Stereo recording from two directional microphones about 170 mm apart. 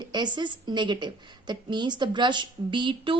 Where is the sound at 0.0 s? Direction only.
25° right (ahead or behind).